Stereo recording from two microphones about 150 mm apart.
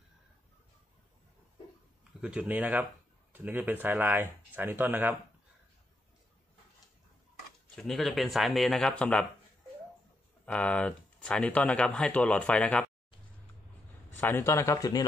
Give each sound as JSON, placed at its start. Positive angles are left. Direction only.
{"t": 2.2, "sound": "speech", "side_deg": -10}
{"t": 7.7, "sound": "speech", "side_deg": 0}
{"t": 10.4, "sound": "speech", "side_deg": 10}
{"t": 14.1, "sound": "speech", "side_deg": 15}